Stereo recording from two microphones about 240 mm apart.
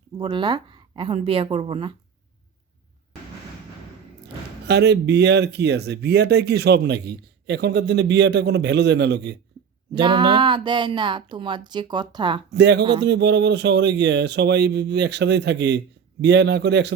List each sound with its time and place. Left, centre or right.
0.2 s speech: centre
4.6 s speech: right
10.0 s speech: centre
12.5 s speech: right
12.8 s speech: centre
13.1 s speech: right